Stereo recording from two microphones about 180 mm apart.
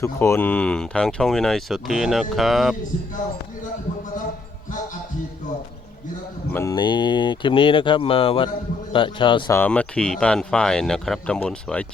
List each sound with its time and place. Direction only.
0.0 s speech: 15° left (ahead or behind)
2.9 s speech: 40° left (ahead or behind)
6.5 s speech: 15° left (ahead or behind)
9.5 s speech: 10° left (ahead or behind)